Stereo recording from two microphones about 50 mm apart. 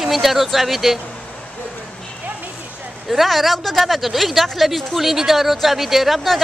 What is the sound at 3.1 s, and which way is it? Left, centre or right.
A woman's voice, centre.